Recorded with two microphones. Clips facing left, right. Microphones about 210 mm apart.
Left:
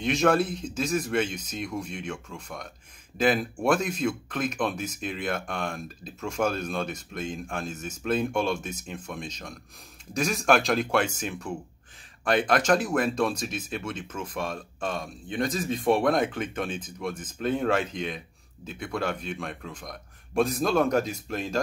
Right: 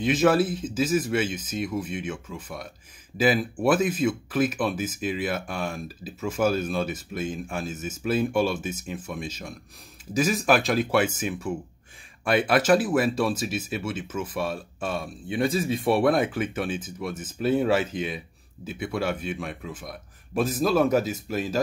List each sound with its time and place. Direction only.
0.0 s speech: 5° right (ahead or behind)